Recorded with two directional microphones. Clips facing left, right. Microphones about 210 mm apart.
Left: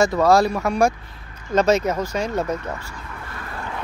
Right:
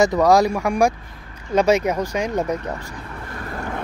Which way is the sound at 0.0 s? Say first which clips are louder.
Right 1 dB; 15° right (ahead or behind).